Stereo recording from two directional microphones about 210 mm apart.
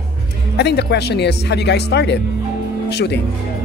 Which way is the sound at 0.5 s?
50° left (ahead or behind).